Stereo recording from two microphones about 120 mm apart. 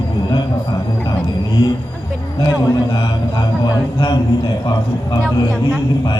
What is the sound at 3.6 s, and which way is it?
Speech, 35° left (ahead or behind).